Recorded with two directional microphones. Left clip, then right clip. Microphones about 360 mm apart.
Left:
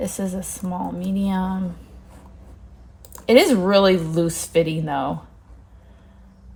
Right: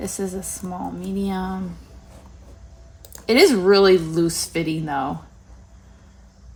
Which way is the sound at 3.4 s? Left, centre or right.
Centre.